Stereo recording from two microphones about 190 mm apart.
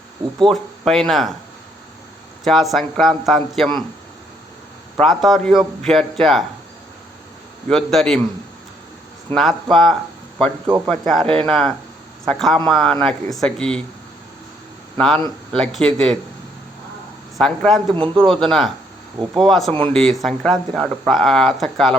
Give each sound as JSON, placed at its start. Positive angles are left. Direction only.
{"t": 0.5, "sound": "a man's voice", "side_deg": 0}
{"t": 2.4, "sound": "a man's voice", "side_deg": 0}
{"t": 4.9, "sound": "a man's voice", "side_deg": 0}
{"t": 7.7, "sound": "a man's voice", "side_deg": 0}
{"t": 9.3, "sound": "a man's voice", "side_deg": 0}
{"t": 14.9, "sound": "a man's voice", "side_deg": 0}
{"t": 17.3, "sound": "a man's voice", "side_deg": 0}
{"t": 17.9, "sound": "speech", "side_deg": -25}
{"t": 18.2, "sound": "a man's voice", "side_deg": 0}